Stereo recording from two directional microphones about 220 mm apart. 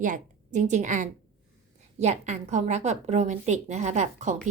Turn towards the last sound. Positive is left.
turn(degrees=-35)  # may be behind; listen again after turning